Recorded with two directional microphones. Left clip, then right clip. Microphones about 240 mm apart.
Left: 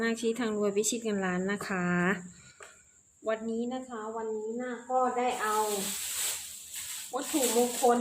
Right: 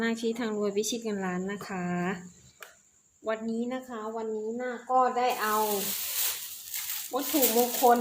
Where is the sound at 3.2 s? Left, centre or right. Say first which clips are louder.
Even; centre; by 5.5 s right.